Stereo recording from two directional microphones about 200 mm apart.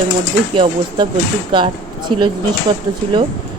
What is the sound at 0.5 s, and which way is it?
Speech, 25° right (ahead or behind).